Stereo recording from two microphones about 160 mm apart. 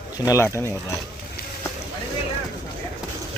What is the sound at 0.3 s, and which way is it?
Speech, 20° left (ahead or behind).